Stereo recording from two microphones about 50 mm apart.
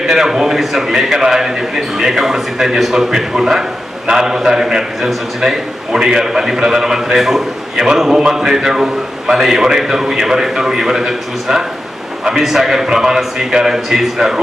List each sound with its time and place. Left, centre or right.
0.0 s a man's voice: centre